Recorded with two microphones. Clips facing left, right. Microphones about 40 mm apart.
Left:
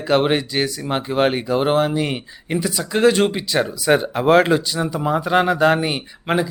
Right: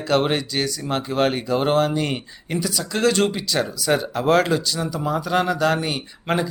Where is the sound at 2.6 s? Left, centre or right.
Left.